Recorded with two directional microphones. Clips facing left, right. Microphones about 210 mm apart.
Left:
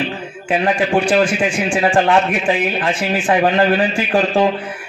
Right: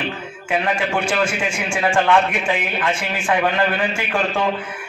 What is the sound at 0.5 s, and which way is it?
A man's voice, 30° left (ahead or behind).